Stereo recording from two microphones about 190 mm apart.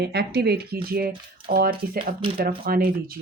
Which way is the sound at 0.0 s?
60° right (ahead or behind).